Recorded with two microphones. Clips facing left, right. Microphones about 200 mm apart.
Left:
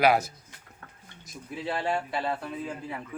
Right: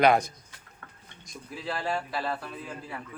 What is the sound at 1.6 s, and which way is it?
Speech, 20° left (ahead or behind).